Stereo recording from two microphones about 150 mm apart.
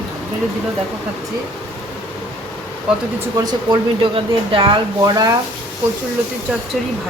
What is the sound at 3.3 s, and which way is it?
Speech, 30° right (ahead or behind).